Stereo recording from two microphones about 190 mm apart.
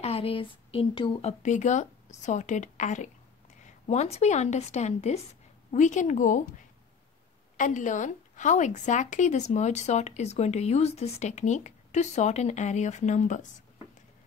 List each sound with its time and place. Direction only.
0.0 s a woman's voice: 30° left (ahead or behind)
7.5 s a woman's voice: 40° left (ahead or behind)